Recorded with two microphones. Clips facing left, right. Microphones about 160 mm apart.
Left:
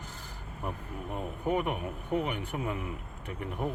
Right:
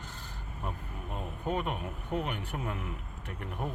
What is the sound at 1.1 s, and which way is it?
Speech, 15° left (ahead or behind).